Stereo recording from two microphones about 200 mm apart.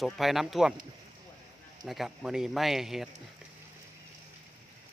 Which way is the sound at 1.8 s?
Centre (ahead or behind).